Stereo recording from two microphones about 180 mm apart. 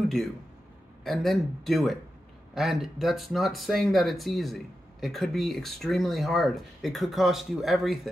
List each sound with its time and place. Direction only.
1.0 s speech: centre (ahead or behind)